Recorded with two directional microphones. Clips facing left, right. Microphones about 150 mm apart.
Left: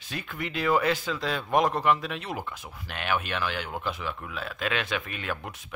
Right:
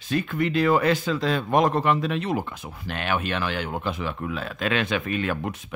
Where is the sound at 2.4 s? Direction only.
20° right (ahead or behind).